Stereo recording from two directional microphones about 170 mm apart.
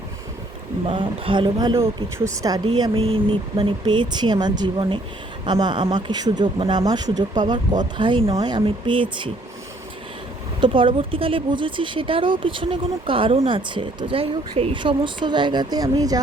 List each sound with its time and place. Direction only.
0.9 s speech: 30° right (ahead or behind)
10.6 s speech: 30° right (ahead or behind)